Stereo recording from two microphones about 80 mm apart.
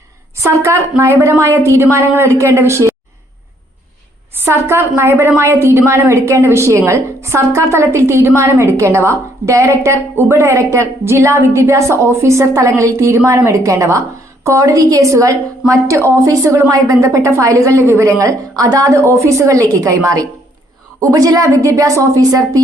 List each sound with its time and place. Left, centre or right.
0.4 s a woman's voice: right
4.4 s a woman's voice: right